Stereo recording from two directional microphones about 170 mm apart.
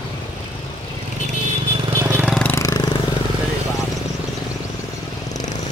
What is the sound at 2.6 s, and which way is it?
Vehicle, 20° left (ahead or behind).